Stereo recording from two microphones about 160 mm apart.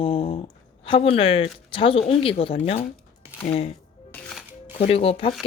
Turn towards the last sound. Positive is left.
turn(degrees=35)  # may be behind; listen again after turning